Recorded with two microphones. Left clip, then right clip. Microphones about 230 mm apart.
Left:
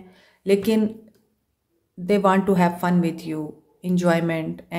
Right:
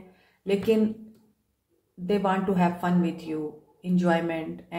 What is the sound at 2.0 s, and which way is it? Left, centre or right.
A woman's voice, left.